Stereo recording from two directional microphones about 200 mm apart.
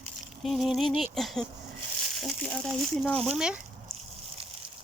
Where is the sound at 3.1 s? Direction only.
30° right (ahead or behind).